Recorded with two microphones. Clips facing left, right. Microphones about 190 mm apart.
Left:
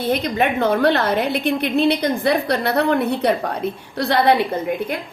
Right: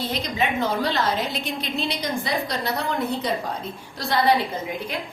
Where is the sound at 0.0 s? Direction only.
55° left (ahead or behind).